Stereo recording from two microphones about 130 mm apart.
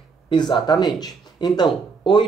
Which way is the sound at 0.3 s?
35° left (ahead or behind).